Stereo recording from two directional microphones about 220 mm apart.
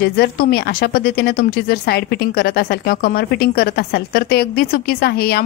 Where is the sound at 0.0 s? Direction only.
45° left (ahead or behind).